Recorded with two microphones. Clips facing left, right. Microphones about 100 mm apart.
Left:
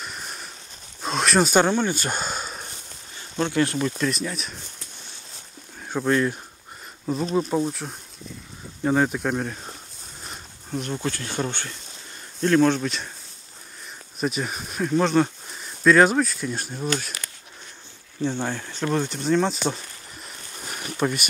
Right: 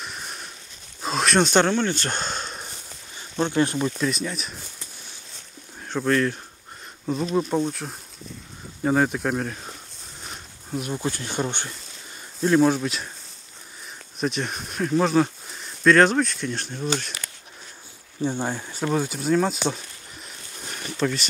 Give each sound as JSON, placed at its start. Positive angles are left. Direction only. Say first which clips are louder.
{"t": 0.0, "sound": "a sound", "louder": "even", "side_deg": 0}
{"t": 1.0, "sound": "speech", "louder": "even", "side_deg": 0}
{"t": 3.3, "sound": "speech", "louder": "right 1 dB", "side_deg": -20}
{"t": 4.0, "sound": "speech", "louder": "even", "side_deg": 0}
{"t": 5.9, "sound": "speech", "louder": "even", "side_deg": 10}
{"t": 7.3, "sound": "speech", "louder": "even", "side_deg": 0}
{"t": 14.2, "sound": "speech", "louder": "even", "side_deg": 5}
{"t": 18.2, "sound": "speech", "louder": "even", "side_deg": -15}
{"t": 20.6, "sound": "a sound", "louder": "even", "side_deg": 5}